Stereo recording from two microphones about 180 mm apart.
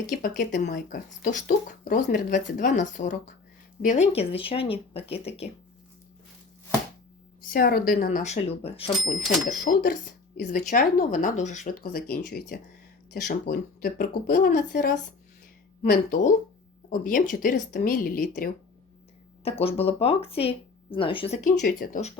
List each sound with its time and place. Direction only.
0.1 s speech: 50° left (ahead or behind)
7.5 s speech: 55° left (ahead or behind); by 8.8 s 35° left (ahead or behind)
9.1 s speech: centre (ahead or behind)
10.3 s speech: 55° left (ahead or behind)
19.5 s speech: 35° left (ahead or behind)
21.5 s speech: 65° left (ahead or behind)